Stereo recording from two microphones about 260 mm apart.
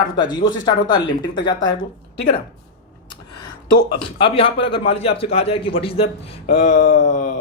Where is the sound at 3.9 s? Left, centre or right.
Left.